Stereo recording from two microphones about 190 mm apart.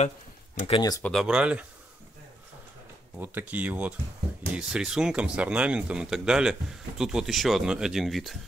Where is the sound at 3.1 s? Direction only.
10° right (ahead or behind).